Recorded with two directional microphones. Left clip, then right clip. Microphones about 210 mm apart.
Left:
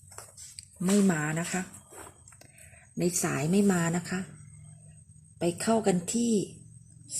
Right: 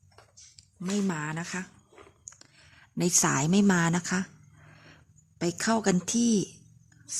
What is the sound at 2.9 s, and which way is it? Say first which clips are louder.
A woman's voice: right 4 dB; 30° right (ahead or behind).